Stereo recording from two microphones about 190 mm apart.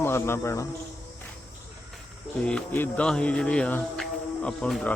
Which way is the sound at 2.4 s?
5° left (ahead or behind).